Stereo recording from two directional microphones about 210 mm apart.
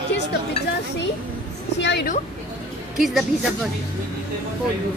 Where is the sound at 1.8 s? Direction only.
55° left (ahead or behind).